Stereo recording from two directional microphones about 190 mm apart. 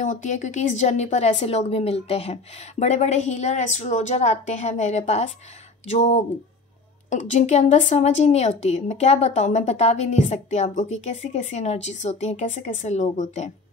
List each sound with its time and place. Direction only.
0.0 s a woman's voice: 40° left (ahead or behind)